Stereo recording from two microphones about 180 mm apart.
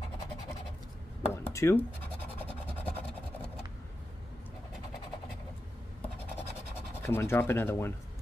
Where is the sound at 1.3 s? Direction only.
15° left (ahead or behind).